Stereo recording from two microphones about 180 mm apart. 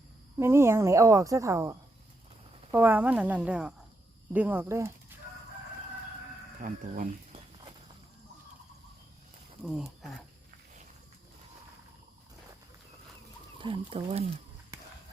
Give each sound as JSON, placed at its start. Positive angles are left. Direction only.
{"t": 0.3, "sound": "speech", "side_deg": -15}
{"t": 2.7, "sound": "speech", "side_deg": -10}
{"t": 6.6, "sound": "speech", "side_deg": -50}
{"t": 9.6, "sound": "speech", "side_deg": 0}
{"t": 13.6, "sound": "speech", "side_deg": -30}